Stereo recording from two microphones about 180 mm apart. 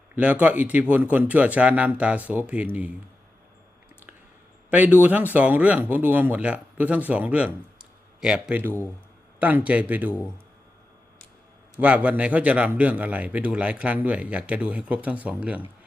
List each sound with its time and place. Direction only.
0.2 s speech: 10° right (ahead or behind)
4.7 s speech: 10° right (ahead or behind)
11.8 s speech: 5° right (ahead or behind)